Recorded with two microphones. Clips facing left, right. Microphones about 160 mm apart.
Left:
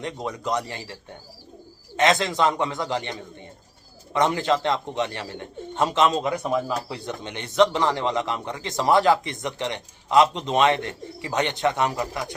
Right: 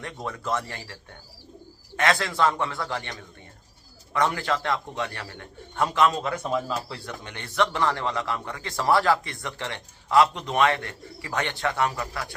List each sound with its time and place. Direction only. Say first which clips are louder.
0.0 s a man's voice: left 4 dB; 20° left (ahead or behind)
2.0 s a man's voice: left 3 dB; 20° left (ahead or behind)